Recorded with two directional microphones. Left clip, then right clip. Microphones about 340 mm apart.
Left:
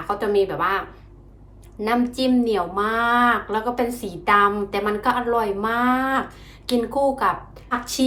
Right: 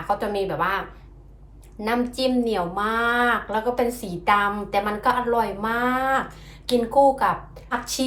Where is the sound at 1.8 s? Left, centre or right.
Centre.